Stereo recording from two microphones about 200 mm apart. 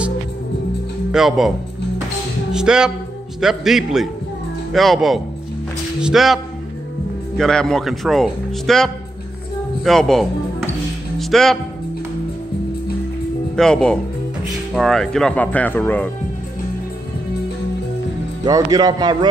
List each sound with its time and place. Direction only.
1.1 s speech: centre (ahead or behind)
2.5 s speech: 5° right (ahead or behind)
11.1 s music: centre (ahead or behind)
13.6 s speech: 5° left (ahead or behind)
18.4 s speech: 20° right (ahead or behind)